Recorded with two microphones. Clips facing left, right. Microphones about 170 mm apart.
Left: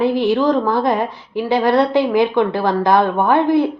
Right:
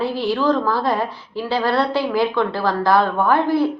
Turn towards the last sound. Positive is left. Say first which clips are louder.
# left 3 dB
turn(degrees=20)  # may be behind; listen again after turning